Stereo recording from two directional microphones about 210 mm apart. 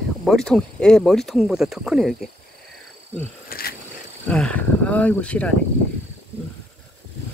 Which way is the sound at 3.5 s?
45° left (ahead or behind).